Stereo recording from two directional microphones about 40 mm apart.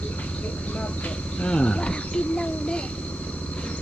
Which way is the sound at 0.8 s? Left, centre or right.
Left.